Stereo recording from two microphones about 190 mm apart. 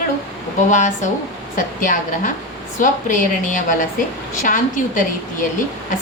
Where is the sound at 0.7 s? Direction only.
40° left (ahead or behind).